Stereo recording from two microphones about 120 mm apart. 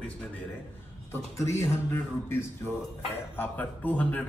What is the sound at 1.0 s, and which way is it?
Speech, 25° left (ahead or behind).